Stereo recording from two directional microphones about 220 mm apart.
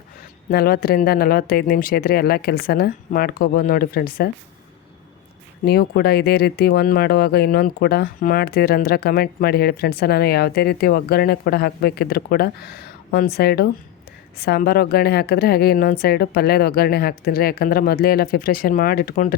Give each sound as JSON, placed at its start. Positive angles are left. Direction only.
{"t": 0.5, "sound": "speech", "side_deg": 45}
{"t": 5.6, "sound": "speech", "side_deg": 45}